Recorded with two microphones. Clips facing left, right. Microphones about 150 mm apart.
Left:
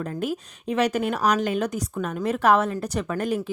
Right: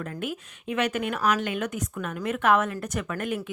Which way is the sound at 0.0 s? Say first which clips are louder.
Left 5 dB; 35° left (ahead or behind).